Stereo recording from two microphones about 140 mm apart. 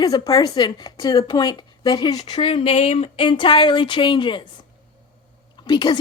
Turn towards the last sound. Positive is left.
turn(degrees=35)  # may be behind; listen again after turning